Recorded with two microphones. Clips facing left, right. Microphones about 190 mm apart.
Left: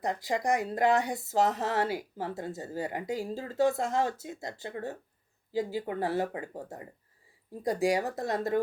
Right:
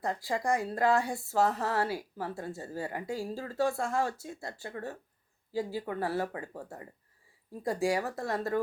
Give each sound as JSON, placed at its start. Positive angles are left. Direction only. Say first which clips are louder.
{"t": 0.0, "sound": "speech", "louder": "left 2 dB", "side_deg": 20}